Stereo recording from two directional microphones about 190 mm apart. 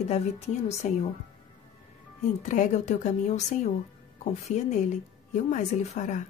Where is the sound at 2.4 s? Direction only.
40° left (ahead or behind).